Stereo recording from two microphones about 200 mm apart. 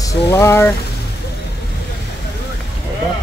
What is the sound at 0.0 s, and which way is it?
Speech, 15° left (ahead or behind).